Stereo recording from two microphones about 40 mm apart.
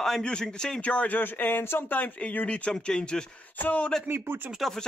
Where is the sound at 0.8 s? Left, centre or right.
Left.